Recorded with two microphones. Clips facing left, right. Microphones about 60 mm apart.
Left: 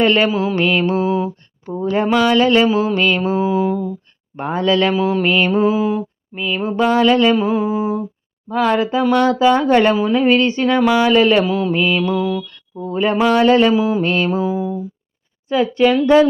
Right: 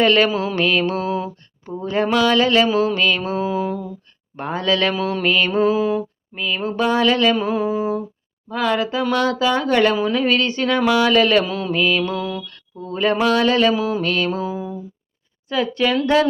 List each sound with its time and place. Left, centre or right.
0.0 s mantra: left
0.3 s mantra: centre
0.5 s mantra: left
4.4 s mantra: left
4.9 s mantra: centre
5.2 s mantra: left
8.4 s mantra: left; by 12.5 s centre
12.5 s mantra: centre
14.0 s mantra: left
14.3 s mantra: centre
15.4 s mantra: left